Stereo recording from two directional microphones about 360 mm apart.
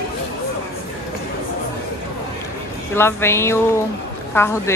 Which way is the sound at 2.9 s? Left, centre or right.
Centre.